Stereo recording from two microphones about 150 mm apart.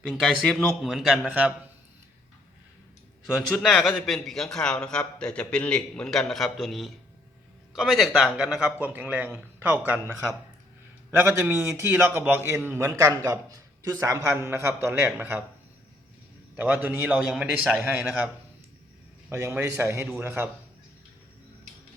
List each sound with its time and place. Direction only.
0.1 s a man's voice: centre (ahead or behind)
3.3 s a man's voice: 5° left (ahead or behind); by 15.4 s 15° right (ahead or behind)
16.6 s speech: 10° right (ahead or behind)
19.3 s speech: 15° right (ahead or behind)